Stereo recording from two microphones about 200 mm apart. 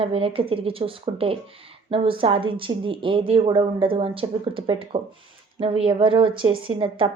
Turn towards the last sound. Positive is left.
turn(degrees=-25)  # may be behind; listen again after turning